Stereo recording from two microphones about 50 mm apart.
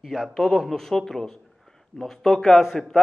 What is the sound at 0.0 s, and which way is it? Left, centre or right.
A man's voice, centre.